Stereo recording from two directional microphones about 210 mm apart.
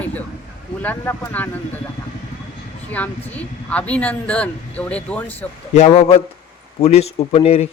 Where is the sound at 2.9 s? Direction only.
5° left (ahead or behind).